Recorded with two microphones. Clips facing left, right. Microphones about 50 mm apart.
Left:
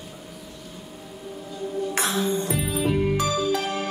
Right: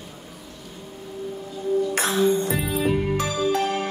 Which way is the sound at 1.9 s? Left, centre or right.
Right.